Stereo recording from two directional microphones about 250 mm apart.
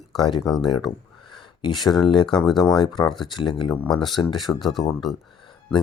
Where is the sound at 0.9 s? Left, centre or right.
Centre.